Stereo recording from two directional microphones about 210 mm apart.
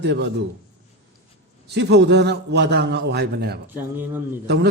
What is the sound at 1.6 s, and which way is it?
A man's voice, 55° right (ahead or behind).